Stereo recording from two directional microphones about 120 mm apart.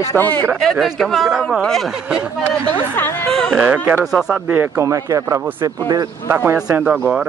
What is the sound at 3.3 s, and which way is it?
A woman's voice, 5° left (ahead or behind).